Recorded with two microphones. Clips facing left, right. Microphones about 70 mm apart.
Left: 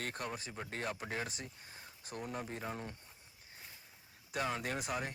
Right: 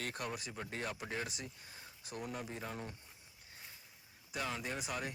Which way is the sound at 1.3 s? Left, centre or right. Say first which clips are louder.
Even; left.